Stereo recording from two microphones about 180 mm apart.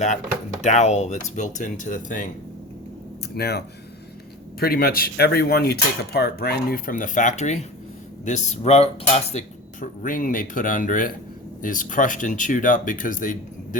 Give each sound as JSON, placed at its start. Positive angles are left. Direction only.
{"t": 0.6, "sound": "speech", "side_deg": 40}
{"t": 3.3, "sound": "speech", "side_deg": 60}
{"t": 4.6, "sound": "speech", "side_deg": 60}
{"t": 9.8, "sound": "speech", "side_deg": 45}